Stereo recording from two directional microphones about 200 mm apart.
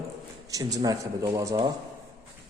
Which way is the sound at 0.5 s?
20° right (ahead or behind).